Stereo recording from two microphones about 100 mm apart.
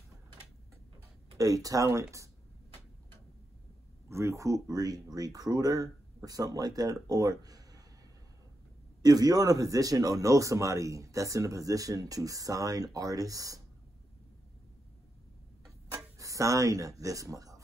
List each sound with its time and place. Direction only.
1.4 s speech: 35° right (ahead or behind)
4.1 s speech: 30° right (ahead or behind)
9.0 s speech: 40° right (ahead or behind)
16.2 s speech: 35° right (ahead or behind)